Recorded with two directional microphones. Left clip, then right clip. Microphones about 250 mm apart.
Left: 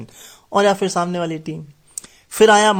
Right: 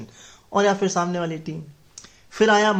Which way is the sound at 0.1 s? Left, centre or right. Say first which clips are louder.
Left 5 dB; left.